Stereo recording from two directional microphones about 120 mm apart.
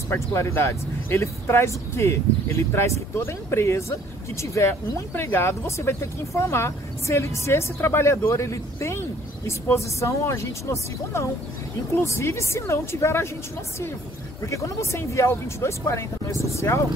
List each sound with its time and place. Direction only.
0.1 s speech: 25° left (ahead or behind)
14.4 s speech: 25° left (ahead or behind)